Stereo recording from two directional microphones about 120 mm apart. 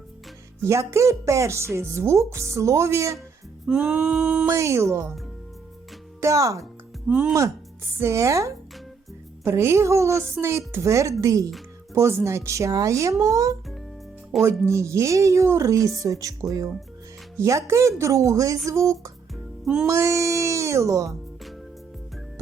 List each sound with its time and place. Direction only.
0.6 s speech: 25° right (ahead or behind)
3.7 s a sound: 5° right (ahead or behind)
4.5 s speech: 25° right (ahead or behind)
6.2 s speech: 25° right (ahead or behind)
7.1 s speech: 10° right (ahead or behind)
7.9 s speech: 25° right (ahead or behind)
14.3 s a sound: centre (ahead or behind)
14.7 s speech: 25° right (ahead or behind)
19.6 s music: 5° right (ahead or behind)
19.9 s speech: 25° right (ahead or behind)